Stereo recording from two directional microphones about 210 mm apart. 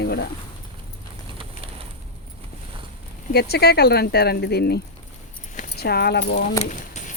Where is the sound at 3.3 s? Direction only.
50° left (ahead or behind).